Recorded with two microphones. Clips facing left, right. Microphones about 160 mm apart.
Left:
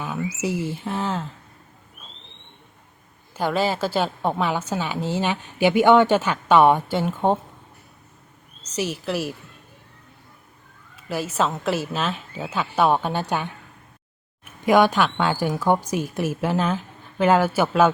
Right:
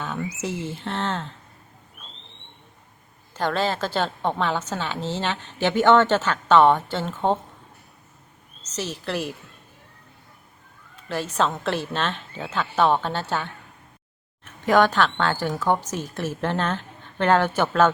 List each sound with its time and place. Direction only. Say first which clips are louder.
0.0 s a sound: left 2 dB; 10° left (ahead or behind)
0.4 s a woman's voice: left 6 dB; 10° left (ahead or behind)
3.3 s a woman's voice: left 2 dB; 10° left (ahead or behind)
8.6 s a woman's voice: left 4 dB; 10° left (ahead or behind)
10.9 s a woman's voice: left 1 dB; 10° left (ahead or behind)